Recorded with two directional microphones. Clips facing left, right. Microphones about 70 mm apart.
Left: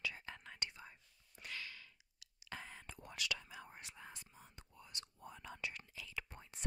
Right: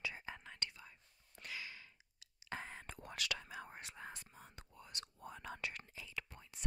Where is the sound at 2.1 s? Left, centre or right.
Right.